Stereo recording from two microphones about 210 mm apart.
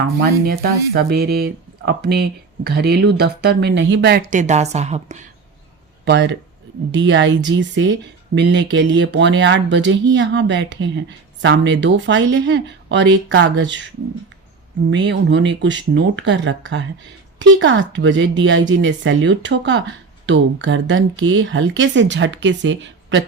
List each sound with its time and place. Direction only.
0.0 s speech: 45° right (ahead or behind)
6.1 s speech: 55° right (ahead or behind)
14.8 s speech: 55° right (ahead or behind)